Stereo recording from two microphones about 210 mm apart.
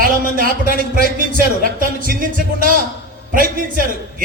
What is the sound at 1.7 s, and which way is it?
A woman's voice, 40° right (ahead or behind).